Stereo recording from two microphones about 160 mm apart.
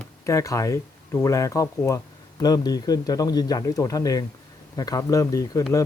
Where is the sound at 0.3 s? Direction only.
20° left (ahead or behind).